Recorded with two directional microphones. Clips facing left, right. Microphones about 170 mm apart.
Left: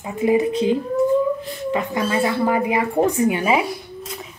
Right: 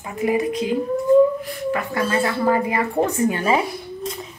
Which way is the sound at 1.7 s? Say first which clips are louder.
Left 2 dB; 20° left (ahead or behind).